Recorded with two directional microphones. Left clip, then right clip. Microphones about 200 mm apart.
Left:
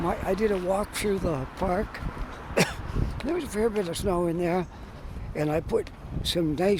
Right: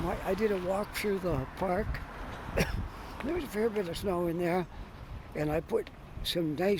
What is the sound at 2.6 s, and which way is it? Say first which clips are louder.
Throat clearing: left 7 dB; 20° left (ahead or behind).